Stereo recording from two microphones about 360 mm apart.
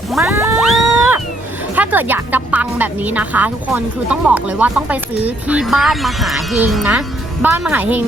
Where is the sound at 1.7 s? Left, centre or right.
Centre.